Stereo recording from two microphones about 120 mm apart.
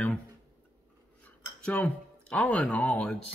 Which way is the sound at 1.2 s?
10° left (ahead or behind).